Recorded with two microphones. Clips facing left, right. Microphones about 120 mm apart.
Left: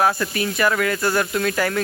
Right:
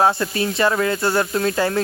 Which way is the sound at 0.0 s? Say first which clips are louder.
Right 2 dB; 25° right (ahead or behind).